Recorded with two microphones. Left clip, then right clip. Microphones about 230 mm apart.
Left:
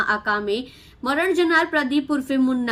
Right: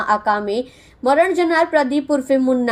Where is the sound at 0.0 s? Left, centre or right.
Centre.